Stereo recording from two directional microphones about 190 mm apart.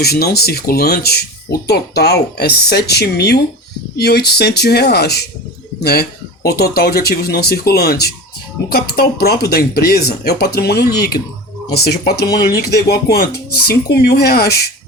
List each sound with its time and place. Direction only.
0.0 s speech: 55° left (ahead or behind)